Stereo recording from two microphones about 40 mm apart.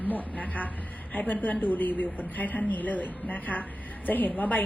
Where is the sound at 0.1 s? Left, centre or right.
Left.